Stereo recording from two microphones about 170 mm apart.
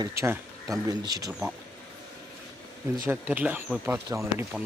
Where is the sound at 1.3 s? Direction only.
5° right (ahead or behind).